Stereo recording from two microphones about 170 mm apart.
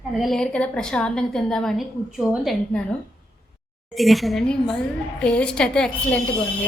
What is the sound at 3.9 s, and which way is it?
A woman's voice, centre (ahead or behind).